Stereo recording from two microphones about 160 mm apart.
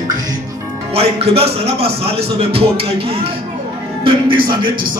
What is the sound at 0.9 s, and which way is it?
A man's voice, 40° right (ahead or behind).